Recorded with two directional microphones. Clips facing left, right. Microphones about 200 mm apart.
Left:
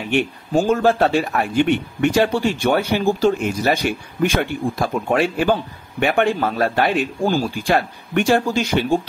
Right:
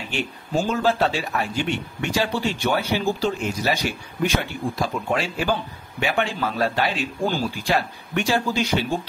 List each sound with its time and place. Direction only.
0.1 s speech: 55° left (ahead or behind)